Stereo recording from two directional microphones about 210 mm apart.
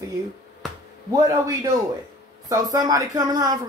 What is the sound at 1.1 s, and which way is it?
Speech, 15° right (ahead or behind).